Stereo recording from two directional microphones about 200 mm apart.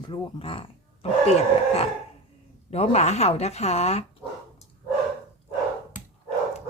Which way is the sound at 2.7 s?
30° left (ahead or behind).